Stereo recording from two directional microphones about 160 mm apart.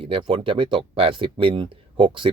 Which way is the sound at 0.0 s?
35° right (ahead or behind).